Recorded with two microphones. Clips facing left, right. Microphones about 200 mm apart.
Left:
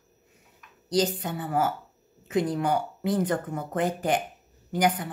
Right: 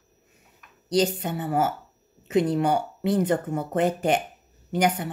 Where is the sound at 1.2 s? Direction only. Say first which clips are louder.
Right 2 dB; 25° right (ahead or behind).